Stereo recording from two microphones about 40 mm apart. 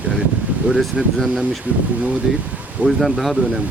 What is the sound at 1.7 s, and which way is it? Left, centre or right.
Speech, right.